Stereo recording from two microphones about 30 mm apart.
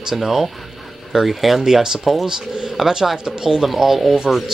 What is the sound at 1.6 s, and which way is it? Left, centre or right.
Speech, centre.